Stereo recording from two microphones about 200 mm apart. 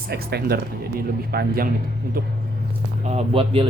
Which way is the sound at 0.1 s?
50° right (ahead or behind).